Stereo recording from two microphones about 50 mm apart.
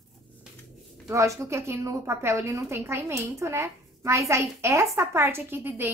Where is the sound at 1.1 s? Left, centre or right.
Right.